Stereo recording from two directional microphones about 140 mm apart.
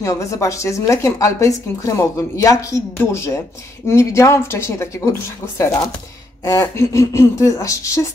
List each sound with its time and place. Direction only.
0.0 s speech: 20° left (ahead or behind)
6.4 s speech: 20° left (ahead or behind)